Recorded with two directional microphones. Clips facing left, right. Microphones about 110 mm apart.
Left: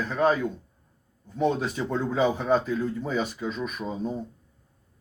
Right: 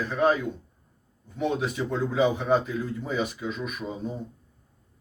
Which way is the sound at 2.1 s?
40° left (ahead or behind).